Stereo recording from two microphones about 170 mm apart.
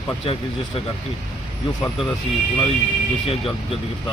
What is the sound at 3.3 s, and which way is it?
Speech, 35° left (ahead or behind).